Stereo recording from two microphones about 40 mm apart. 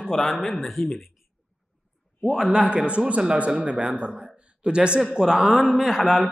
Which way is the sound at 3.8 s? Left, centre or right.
Right.